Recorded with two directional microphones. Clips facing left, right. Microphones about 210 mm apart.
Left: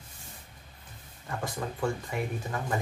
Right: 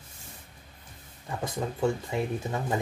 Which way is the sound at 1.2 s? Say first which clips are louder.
Right 2 dB; 20° right (ahead or behind).